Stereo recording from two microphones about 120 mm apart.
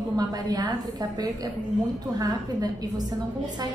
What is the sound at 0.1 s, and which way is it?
A woman's voice, 35° right (ahead or behind).